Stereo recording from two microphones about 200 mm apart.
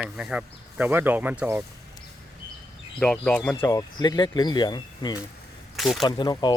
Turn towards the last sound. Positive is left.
turn(degrees=25)  # may be behind; listen again after turning